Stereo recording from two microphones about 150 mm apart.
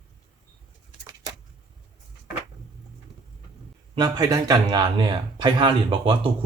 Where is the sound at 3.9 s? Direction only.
25° right (ahead or behind).